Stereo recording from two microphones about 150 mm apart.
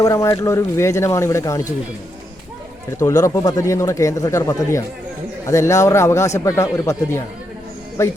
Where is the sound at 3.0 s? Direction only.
20° left (ahead or behind).